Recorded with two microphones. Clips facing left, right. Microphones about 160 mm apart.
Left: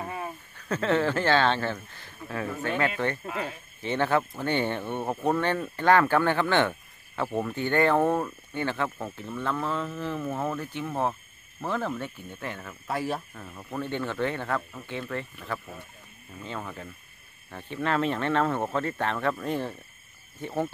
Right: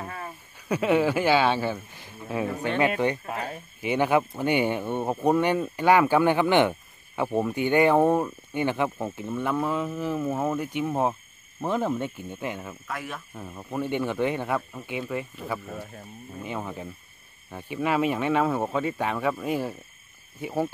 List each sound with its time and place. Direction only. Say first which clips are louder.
0.0 s a sound: left 2 dB; 15° left (ahead or behind)
0.6 s speech: right 3 dB; 10° right (ahead or behind)
3.3 s speech: right 1 dB; 40° right (ahead or behind)
3.8 s speech: right 3 dB; 15° right (ahead or behind)
12.8 s speech: left 8 dB; 30° left (ahead or behind)
13.3 s speech: right 3 dB; 10° right (ahead or behind)